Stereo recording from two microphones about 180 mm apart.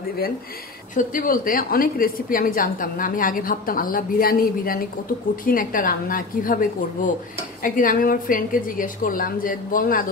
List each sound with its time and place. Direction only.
0.9 s a woman's voice: 50° left (ahead or behind)